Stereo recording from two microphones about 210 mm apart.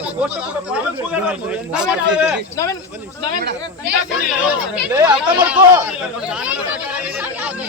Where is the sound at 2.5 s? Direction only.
15° left (ahead or behind).